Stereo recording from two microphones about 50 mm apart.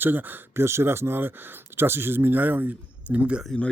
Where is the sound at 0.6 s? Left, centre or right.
Right.